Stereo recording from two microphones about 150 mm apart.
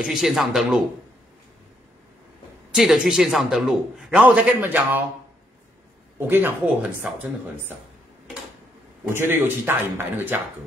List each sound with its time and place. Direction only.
0.0 s a man's voice: 5° right (ahead or behind)
2.7 s a man's voice: centre (ahead or behind)
6.1 s a man's voice: 15° right (ahead or behind)
9.1 s a man's voice: 15° right (ahead or behind)